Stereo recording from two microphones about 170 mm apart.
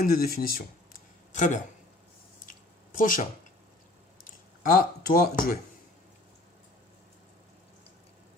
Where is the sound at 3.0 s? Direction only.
55° left (ahead or behind).